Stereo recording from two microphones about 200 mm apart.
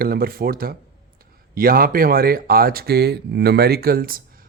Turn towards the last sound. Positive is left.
turn(degrees=-45)  # may be behind; listen again after turning